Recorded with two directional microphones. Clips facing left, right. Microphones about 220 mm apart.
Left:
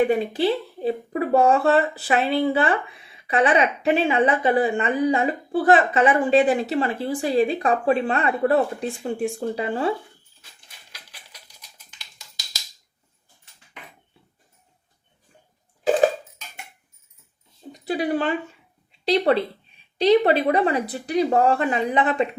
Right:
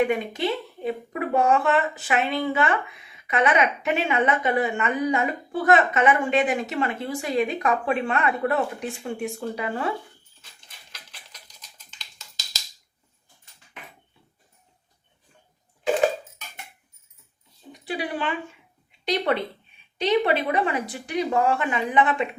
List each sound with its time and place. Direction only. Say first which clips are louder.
0.0 s speech: left 4 dB; 30° left (ahead or behind)
11.1 s typing: left 1 dB; 10° left (ahead or behind)
17.7 s a sound: left 6 dB; 40° left (ahead or behind)
18.9 s speech: left 5 dB; 35° left (ahead or behind)